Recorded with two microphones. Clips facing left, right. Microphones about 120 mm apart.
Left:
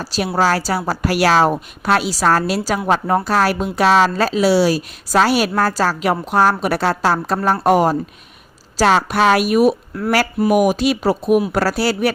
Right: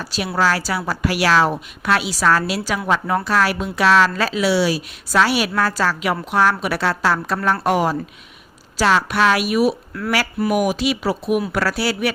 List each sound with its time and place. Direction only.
0.0 s a woman's voice: 40° left (ahead or behind)